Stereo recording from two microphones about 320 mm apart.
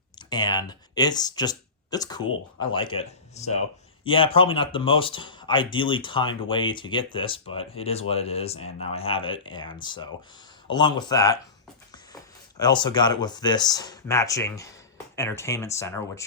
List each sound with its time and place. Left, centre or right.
0.2 s speech: centre
12.5 s speech: centre